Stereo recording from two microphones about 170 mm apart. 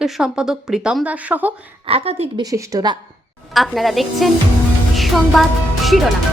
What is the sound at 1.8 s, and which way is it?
Speech, 35° right (ahead or behind).